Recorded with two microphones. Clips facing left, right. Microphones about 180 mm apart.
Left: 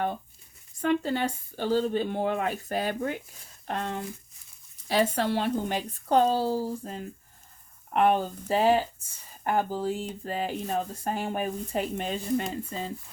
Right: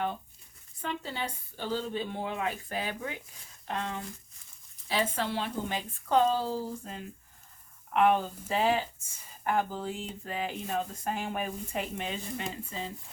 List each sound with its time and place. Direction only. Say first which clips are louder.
0.8 s speech: left 10 dB; 50° left (ahead or behind); by 6.7 s 30° left (ahead or behind)
6.8 s speech: left 5 dB; 45° left (ahead or behind)